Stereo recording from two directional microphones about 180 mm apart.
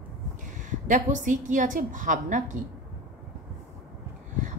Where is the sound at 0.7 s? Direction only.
45° right (ahead or behind).